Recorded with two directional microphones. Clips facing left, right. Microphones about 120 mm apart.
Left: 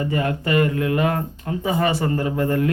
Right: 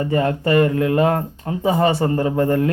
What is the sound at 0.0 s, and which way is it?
Speech, 30° right (ahead or behind).